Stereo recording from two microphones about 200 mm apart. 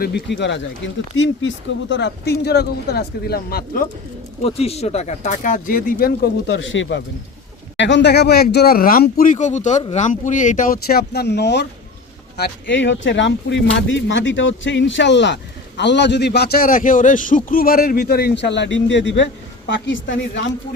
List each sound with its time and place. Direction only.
0.0 s a man's voice: 60° left (ahead or behind)
4.4 s a man's voice: 30° left (ahead or behind); by 20.4 s 65° left (ahead or behind)